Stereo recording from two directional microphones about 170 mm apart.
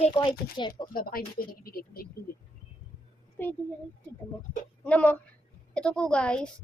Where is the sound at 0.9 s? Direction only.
60° left (ahead or behind).